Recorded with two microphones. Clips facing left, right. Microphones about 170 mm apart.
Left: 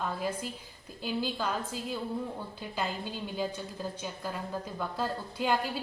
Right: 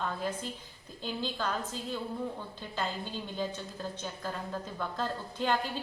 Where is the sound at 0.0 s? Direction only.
10° left (ahead or behind).